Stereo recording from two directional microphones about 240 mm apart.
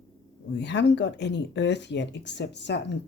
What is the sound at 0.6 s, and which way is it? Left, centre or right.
Speech, left.